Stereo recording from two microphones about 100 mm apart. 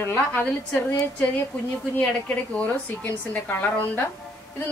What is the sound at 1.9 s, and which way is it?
A woman's voice, 15° left (ahead or behind).